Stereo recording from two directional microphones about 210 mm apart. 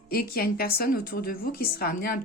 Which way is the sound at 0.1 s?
45° left (ahead or behind).